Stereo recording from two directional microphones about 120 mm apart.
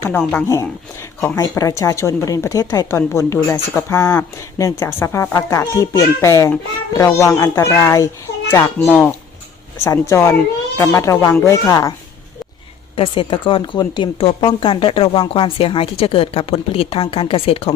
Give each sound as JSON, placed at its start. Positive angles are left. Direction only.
{"t": 0.0, "sound": "speech", "side_deg": 15}
{"t": 13.0, "sound": "a woman's voice", "side_deg": 45}